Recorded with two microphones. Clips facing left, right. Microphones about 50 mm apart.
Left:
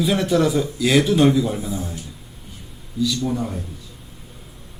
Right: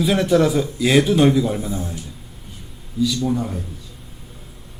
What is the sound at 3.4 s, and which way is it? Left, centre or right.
Speech, centre.